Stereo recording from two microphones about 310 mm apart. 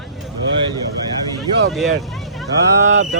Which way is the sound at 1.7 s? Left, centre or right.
Centre.